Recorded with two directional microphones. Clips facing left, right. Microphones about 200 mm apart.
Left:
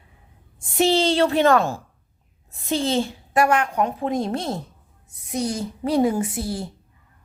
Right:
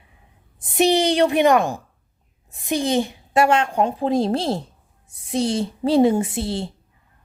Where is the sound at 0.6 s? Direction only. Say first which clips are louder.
Right 2 dB; 20° right (ahead or behind).